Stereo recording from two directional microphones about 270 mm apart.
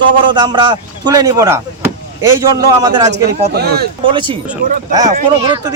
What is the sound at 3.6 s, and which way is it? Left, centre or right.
Speech, right.